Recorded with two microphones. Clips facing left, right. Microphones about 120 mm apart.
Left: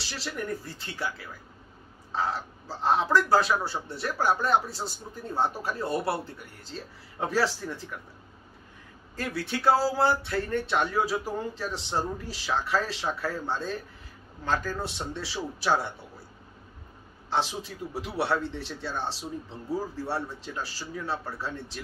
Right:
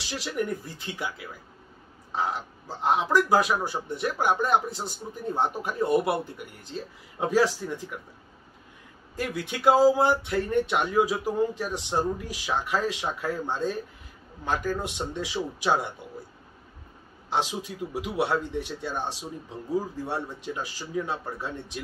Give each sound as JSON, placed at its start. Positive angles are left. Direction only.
{"t": 0.1, "sound": "speech", "side_deg": -15}
{"t": 9.1, "sound": "speech", "side_deg": -15}
{"t": 17.3, "sound": "speech", "side_deg": -15}